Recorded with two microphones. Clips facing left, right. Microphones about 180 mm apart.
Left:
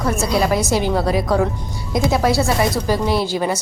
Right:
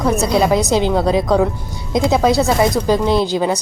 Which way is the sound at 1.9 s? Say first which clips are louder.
Right 3 dB; 20° right (ahead or behind).